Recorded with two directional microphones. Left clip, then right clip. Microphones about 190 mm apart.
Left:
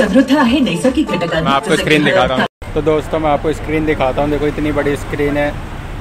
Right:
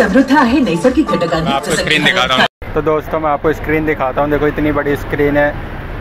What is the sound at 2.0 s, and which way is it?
Speech, 30° left (ahead or behind).